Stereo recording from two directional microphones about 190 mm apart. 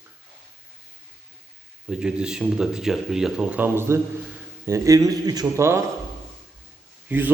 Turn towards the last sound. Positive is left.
turn(degrees=-10)  # may be behind; listen again after turning